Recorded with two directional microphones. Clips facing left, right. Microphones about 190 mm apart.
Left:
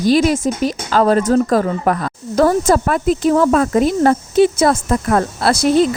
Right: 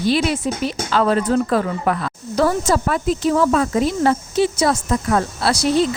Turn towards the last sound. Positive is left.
turn(degrees=50)  # may be behind; listen again after turning